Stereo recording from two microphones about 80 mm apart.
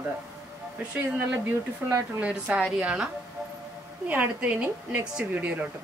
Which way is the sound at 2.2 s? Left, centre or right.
Centre.